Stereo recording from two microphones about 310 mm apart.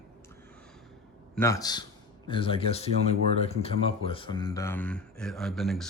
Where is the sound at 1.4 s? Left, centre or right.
Centre.